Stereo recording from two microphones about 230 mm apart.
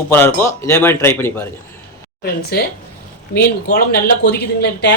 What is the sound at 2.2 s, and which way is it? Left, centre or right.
Speech, left.